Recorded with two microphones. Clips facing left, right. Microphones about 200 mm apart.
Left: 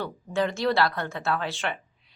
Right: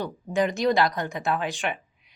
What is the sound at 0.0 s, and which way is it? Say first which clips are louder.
A woman's voice: right 2 dB; 15° right (ahead or behind).